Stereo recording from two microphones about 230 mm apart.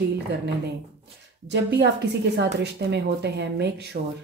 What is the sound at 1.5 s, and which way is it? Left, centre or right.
Speech, right.